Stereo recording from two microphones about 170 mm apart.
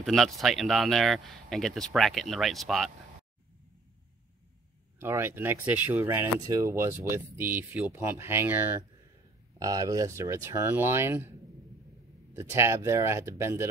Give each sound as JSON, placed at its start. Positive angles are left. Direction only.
{"t": 0.0, "sound": "speech", "side_deg": 0}
{"t": 4.9, "sound": "speech", "side_deg": -15}
{"t": 12.4, "sound": "speech", "side_deg": -15}